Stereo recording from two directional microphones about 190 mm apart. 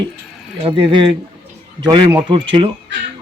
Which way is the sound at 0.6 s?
25° right (ahead or behind).